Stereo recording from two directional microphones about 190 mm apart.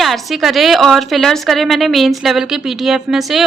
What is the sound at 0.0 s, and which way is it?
A woman's voice, centre (ahead or behind).